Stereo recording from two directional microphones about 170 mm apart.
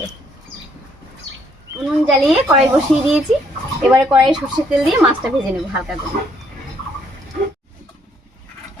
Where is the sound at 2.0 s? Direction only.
Centre (ahead or behind).